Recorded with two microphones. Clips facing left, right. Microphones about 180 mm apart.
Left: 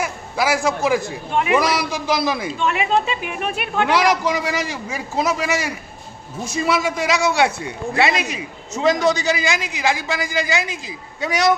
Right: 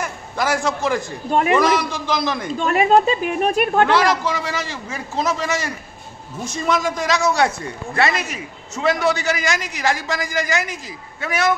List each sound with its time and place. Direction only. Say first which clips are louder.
0.0 s a man's voice: left 2 dB; 10° left (ahead or behind)
2.5 s speech: right 7 dB; 40° right (ahead or behind)
3.8 s a man's voice: left 4 dB; 15° left (ahead or behind)